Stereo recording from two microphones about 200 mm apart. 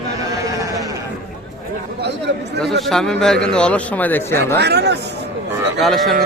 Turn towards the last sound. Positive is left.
turn(degrees=0)  # may be behind; listen again after turning